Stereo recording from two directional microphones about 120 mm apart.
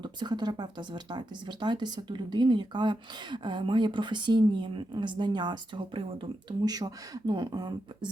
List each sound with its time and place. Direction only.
0.0 s speech: 35° right (ahead or behind)
6.7 s speech: 30° right (ahead or behind)